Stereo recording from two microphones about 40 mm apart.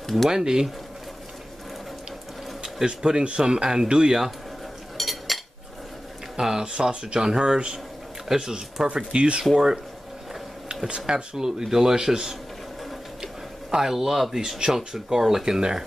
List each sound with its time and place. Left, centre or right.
0.3 s speech: centre
2.6 s speech: centre
4.9 s dishes: centre
6.3 s a sound: centre
6.7 s speech: right
8.9 s speech: right
9.4 s speech: centre
11.3 s speech: centre